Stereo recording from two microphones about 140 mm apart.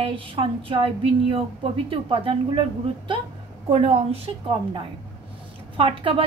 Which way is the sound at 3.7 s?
50° right (ahead or behind).